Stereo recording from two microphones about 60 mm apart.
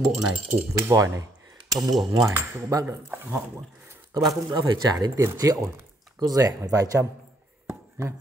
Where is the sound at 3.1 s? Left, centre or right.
Right.